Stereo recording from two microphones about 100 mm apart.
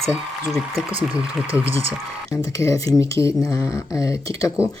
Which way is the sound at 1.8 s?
35° left (ahead or behind).